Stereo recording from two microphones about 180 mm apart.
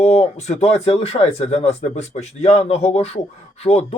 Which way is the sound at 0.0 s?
35° left (ahead or behind).